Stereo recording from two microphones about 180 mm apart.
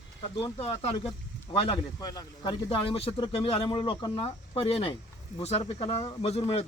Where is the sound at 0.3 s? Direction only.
30° left (ahead or behind).